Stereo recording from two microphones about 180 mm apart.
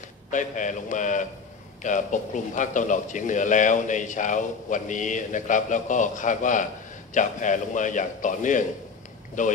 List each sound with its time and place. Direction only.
0.3 s a man's voice: 45° left (ahead or behind)